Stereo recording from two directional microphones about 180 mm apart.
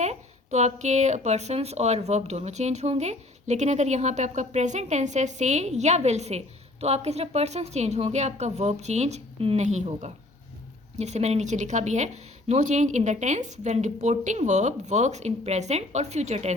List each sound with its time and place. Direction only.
0.0 s a woman's voice: 40° right (ahead or behind)